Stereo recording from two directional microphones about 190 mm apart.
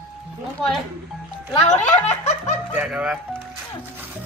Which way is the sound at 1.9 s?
40° left (ahead or behind).